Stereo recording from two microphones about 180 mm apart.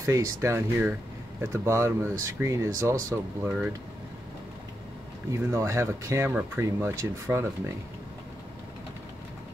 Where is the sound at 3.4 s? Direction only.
5° right (ahead or behind).